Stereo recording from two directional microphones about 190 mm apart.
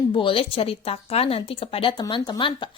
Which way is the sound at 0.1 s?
25° left (ahead or behind).